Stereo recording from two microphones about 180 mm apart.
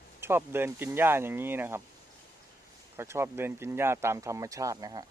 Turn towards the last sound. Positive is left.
turn(degrees=-20)  # may be behind; listen again after turning